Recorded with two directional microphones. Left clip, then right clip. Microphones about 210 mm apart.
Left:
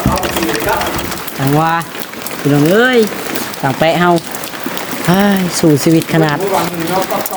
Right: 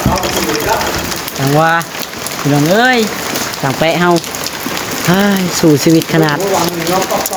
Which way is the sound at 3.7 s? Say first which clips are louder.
Even; 5° left (ahead or behind).